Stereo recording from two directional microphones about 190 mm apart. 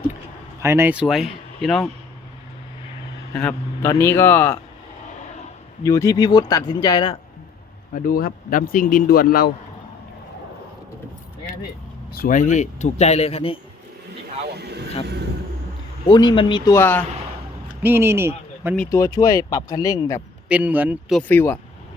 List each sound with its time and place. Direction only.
0.6 s speech: 15° right (ahead or behind)
3.3 s speech: 10° left (ahead or behind)
5.8 s speech: 15° left (ahead or behind)
7.9 s speech: 50° left (ahead or behind)
12.1 s speech: 50° left (ahead or behind); by 13.6 s 30° left (ahead or behind)
14.4 s vehicle: 60° right (ahead or behind)
16.0 s speech: 25° left (ahead or behind)
17.8 s speech: 10° right (ahead or behind)
18.9 s speech: 15° left (ahead or behind)
20.5 s a man's voice: 10° right (ahead or behind)
21.2 s speech: 10° left (ahead or behind)